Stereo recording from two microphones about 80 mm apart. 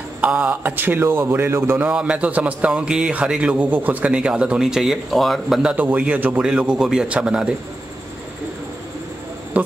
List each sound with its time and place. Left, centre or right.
0.2 s a man's voice: centre
1.9 s a man's voice: centre
5.6 s a man's voice: centre
9.6 s speech: centre